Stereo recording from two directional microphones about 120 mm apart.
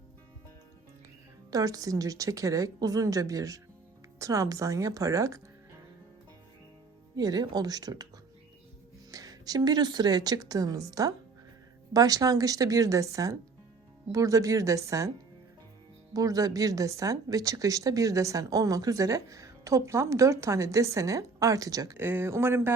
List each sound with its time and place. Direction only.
1.5 s a woman's voice: 30° right (ahead or behind)
7.2 s a woman's voice: 30° right (ahead or behind)
9.1 s a woman's voice: 30° right (ahead or behind)
16.1 s a woman's voice: 30° right (ahead or behind)
21.9 s a woman's voice: 20° right (ahead or behind)